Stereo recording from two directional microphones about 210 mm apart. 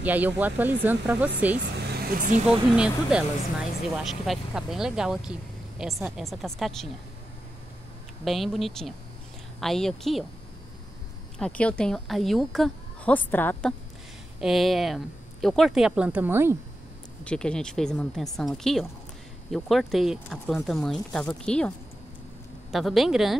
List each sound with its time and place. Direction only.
0.0 s speech: 10° right (ahead or behind)
2.1 s speech: 35° right (ahead or behind)
2.7 s speech: 5° right (ahead or behind)
8.2 s speech: centre (ahead or behind)
11.3 s a woman's voice: 5° left (ahead or behind); by 16.5 s 10° right (ahead or behind)
17.2 s speech: 5° left (ahead or behind)